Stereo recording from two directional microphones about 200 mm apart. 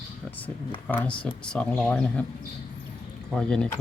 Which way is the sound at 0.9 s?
5° left (ahead or behind).